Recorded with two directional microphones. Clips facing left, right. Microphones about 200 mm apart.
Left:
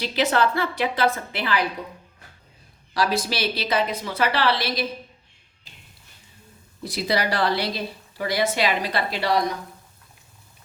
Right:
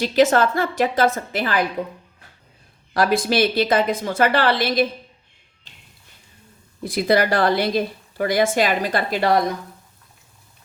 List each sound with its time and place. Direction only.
0.0 s a woman's voice: 45° right (ahead or behind)
2.9 s a woman's voice: 50° right (ahead or behind)
6.8 s a woman's voice: 55° right (ahead or behind)